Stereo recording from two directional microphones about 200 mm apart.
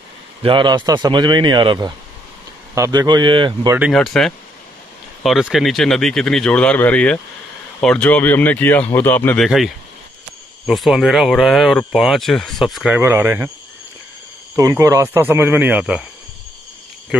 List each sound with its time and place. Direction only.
0.4 s speech: 25° right (ahead or behind)
3.8 s speech: centre (ahead or behind)
10.7 s speech: centre (ahead or behind)
14.5 s speech: 15° right (ahead or behind)